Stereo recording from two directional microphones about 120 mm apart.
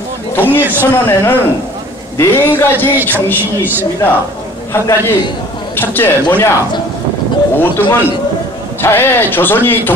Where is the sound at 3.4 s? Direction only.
15° right (ahead or behind).